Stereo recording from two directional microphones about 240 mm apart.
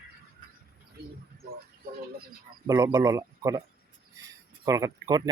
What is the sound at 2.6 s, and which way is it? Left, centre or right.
Speech, centre.